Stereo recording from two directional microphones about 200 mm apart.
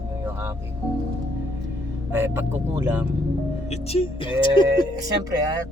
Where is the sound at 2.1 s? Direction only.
10° right (ahead or behind).